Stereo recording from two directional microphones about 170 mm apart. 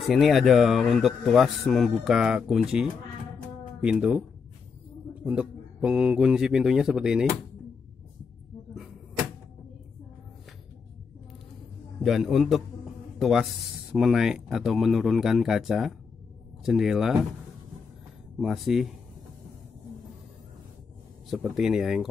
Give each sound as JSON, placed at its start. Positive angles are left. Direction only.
{"t": 0.1, "sound": "speech", "side_deg": 0}
{"t": 5.2, "sound": "speech", "side_deg": -5}
{"t": 12.0, "sound": "speech", "side_deg": 0}
{"t": 18.4, "sound": "speech", "side_deg": 0}
{"t": 21.3, "sound": "speech", "side_deg": 0}